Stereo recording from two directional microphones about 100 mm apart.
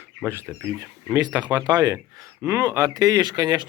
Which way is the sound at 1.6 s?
45° right (ahead or behind).